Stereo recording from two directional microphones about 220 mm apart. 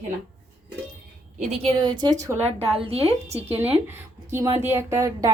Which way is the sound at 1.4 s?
30° right (ahead or behind).